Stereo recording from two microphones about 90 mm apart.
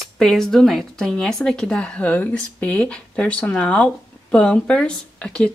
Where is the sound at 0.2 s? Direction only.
5° left (ahead or behind).